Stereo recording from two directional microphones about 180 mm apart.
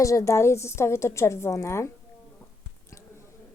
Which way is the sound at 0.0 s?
15° left (ahead or behind).